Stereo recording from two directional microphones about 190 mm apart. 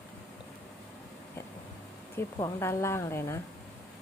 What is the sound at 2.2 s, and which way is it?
A woman's voice, 15° left (ahead or behind).